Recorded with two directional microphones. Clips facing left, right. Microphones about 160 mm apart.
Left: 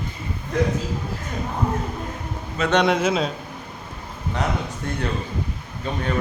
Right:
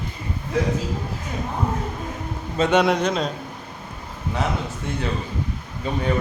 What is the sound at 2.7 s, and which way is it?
Speech, 5° right (ahead or behind).